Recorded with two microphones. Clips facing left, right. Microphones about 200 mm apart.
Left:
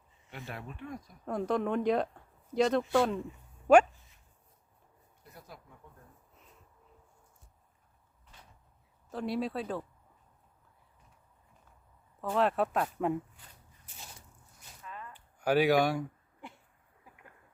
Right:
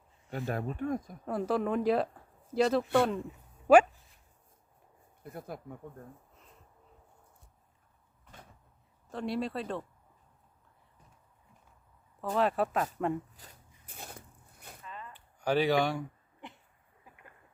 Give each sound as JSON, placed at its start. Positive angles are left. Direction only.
{"t": 0.3, "sound": "speech", "side_deg": -40}
{"t": 1.2, "sound": "speech", "side_deg": -5}
{"t": 5.2, "sound": "speech", "side_deg": -55}
{"t": 8.2, "sound": "door", "side_deg": -50}
{"t": 9.0, "sound": "speech", "side_deg": 0}
{"t": 12.2, "sound": "speech", "side_deg": 0}
{"t": 13.4, "sound": "speech", "side_deg": -40}
{"t": 13.8, "sound": "a sound", "side_deg": -55}
{"t": 15.1, "sound": "a sound", "side_deg": 10}